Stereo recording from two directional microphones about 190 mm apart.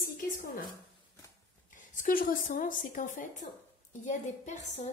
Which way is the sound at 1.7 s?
45° left (ahead or behind).